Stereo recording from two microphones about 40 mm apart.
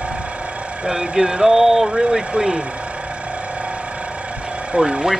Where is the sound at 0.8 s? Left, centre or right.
Centre.